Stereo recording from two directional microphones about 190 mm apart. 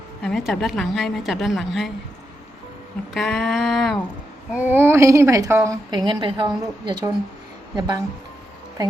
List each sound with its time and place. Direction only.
0.2 s a woman's voice: centre (ahead or behind)
3.2 s a woman's voice: centre (ahead or behind)
4.5 s speech: 10° right (ahead or behind)
6.1 s a woman's voice: 25° right (ahead or behind)